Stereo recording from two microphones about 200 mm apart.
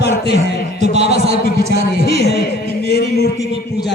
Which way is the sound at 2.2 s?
55° left (ahead or behind).